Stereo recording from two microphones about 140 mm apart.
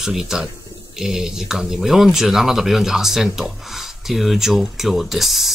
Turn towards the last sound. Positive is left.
turn(degrees=0)  # may be behind; listen again after turning